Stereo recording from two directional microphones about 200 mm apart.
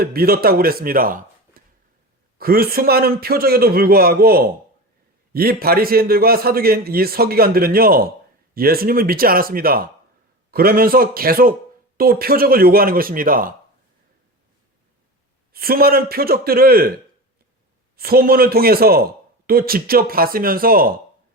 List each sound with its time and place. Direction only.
0.0 s a man's voice: 50° right (ahead or behind)
15.5 s a man's voice: 50° right (ahead or behind)
17.9 s a man's voice: 50° right (ahead or behind)